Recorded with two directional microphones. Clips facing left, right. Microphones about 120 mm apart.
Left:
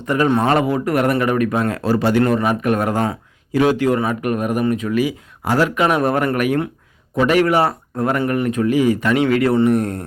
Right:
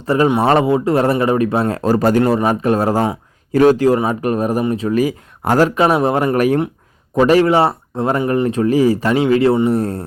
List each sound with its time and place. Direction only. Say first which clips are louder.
0.0 s speech: right 2 dB; 30° right (ahead or behind)
5.4 s speech: right 4 dB; 50° right (ahead or behind)
5.6 s speech: right 3 dB; 30° right (ahead or behind)